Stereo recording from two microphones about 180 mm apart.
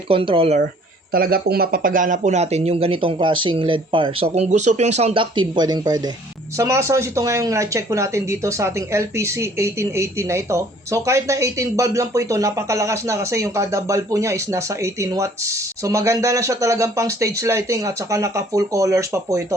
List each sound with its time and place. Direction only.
0.1 s speech: 30° right (ahead or behind)
1.1 s speech: 55° right (ahead or behind); by 19.5 s 15° right (ahead or behind)